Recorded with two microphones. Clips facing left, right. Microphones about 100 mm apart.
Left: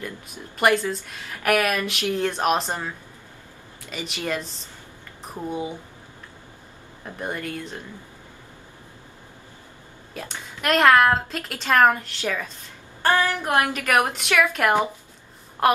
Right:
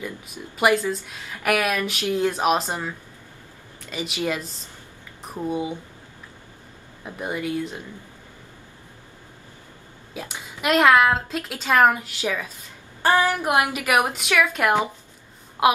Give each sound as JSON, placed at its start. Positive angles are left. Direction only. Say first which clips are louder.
{"t": 0.6, "sound": "a woman's voice", "louder": "even", "side_deg": -5}
{"t": 3.9, "sound": "a woman's voice", "louder": "right 2 dB", "side_deg": -5}
{"t": 7.1, "sound": "a woman's voice", "louder": "right 3 dB", "side_deg": -5}
{"t": 10.1, "sound": "a woman's voice", "louder": "right 1 dB", "side_deg": -5}
{"t": 14.3, "sound": "a woman's voice", "louder": "even", "side_deg": 0}